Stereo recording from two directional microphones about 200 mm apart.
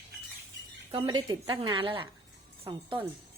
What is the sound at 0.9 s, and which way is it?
A woman's voice, 25° right (ahead or behind).